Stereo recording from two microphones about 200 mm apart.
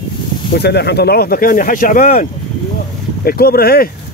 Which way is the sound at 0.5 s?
55° left (ahead or behind).